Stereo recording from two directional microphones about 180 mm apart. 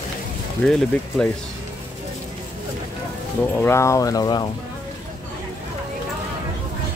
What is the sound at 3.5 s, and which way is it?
Speech, 15° left (ahead or behind).